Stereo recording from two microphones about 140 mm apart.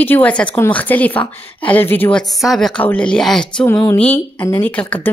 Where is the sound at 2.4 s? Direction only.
Centre (ahead or behind).